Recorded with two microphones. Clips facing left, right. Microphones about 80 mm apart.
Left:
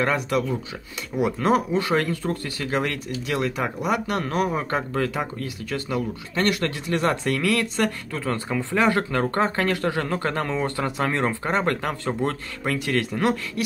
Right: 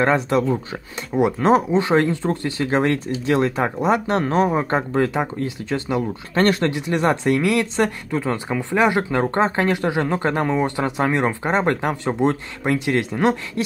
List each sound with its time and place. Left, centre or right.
0.0 s speech: right
6.3 s speech: right
6.6 s speech: centre